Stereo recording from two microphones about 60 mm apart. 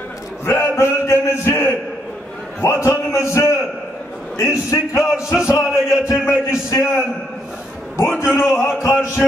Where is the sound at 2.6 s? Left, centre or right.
Left.